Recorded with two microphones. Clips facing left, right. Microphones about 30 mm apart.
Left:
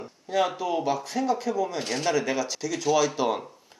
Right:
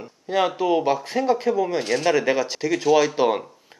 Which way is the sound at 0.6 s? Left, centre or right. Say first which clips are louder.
Right 6 dB; right.